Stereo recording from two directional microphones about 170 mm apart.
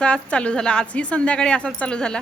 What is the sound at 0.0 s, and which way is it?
A woman's voice, 5° left (ahead or behind).